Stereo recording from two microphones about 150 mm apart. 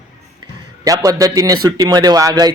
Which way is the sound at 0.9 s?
25° right (ahead or behind).